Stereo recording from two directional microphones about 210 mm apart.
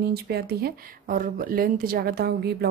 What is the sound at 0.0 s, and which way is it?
Speech, 50° right (ahead or behind).